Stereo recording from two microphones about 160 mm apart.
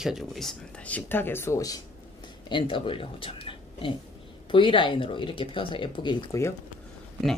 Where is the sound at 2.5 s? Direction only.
30° left (ahead or behind).